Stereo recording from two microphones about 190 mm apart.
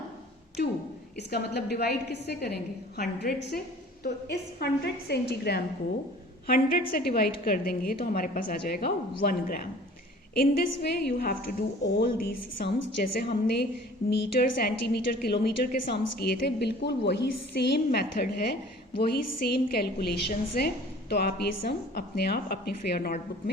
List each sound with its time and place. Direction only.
1.3 s a woman's voice: 60° left (ahead or behind)